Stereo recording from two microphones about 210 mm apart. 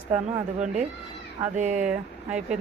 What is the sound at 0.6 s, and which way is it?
Speech, 35° right (ahead or behind).